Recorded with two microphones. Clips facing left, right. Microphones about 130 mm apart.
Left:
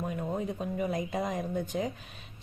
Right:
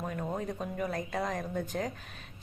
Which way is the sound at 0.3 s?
5° left (ahead or behind).